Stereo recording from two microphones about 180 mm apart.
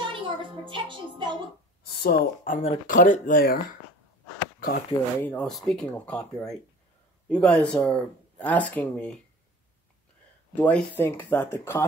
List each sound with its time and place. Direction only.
0.0 s music: 30° right (ahead or behind)
1.9 s speech: 60° left (ahead or behind)
4.6 s speech: 55° left (ahead or behind)
5.2 s speech: 10° left (ahead or behind)
10.5 s speech: 10° left (ahead or behind)